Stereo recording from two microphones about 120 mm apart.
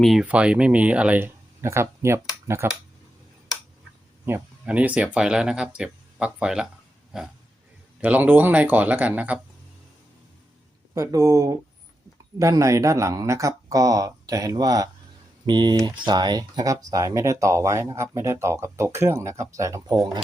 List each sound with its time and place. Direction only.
0.0 s speech: centre (ahead or behind); by 2.8 s 20° right (ahead or behind)
4.6 s speech: 10° right (ahead or behind)
10.9 s speech: 25° right (ahead or behind)